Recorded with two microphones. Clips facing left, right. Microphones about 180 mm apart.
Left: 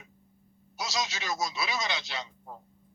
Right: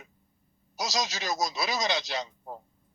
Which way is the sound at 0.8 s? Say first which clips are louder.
Right 2 dB; 40° right (ahead or behind).